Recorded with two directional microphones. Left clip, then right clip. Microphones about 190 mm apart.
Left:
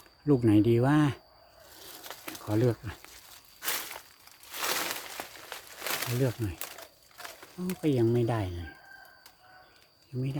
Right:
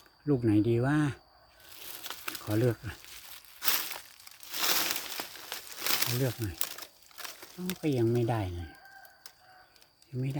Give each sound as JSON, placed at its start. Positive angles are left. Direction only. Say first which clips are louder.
{"t": 0.3, "sound": "speech", "louder": "left 3 dB", "side_deg": 20}
{"t": 2.4, "sound": "speech", "louder": "left 2 dB", "side_deg": 0}
{"t": 3.6, "sound": "a sound", "louder": "right 2 dB", "side_deg": -60}
{"t": 4.4, "sound": "crumpling", "louder": "right 1 dB", "side_deg": -60}
{"t": 6.1, "sound": "speech", "louder": "left 2 dB", "side_deg": 15}
{"t": 6.6, "sound": "crumpling", "louder": "right 2 dB", "side_deg": -60}
{"t": 7.8, "sound": "speech", "louder": "left 2 dB", "side_deg": 5}